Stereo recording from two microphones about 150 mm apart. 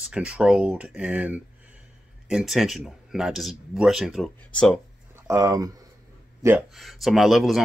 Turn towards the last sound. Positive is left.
turn(degrees=0)  # may be behind; listen again after turning